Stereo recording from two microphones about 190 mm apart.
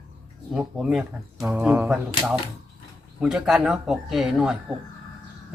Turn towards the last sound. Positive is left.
turn(degrees=-5)  # may be behind; listen again after turning